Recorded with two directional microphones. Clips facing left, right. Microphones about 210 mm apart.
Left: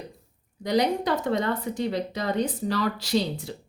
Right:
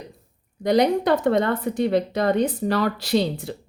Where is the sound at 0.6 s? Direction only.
55° right (ahead or behind).